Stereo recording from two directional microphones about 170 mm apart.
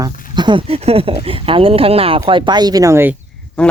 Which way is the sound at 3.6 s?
5° left (ahead or behind).